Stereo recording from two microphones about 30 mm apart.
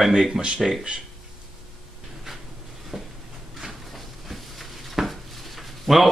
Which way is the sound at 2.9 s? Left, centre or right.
Centre.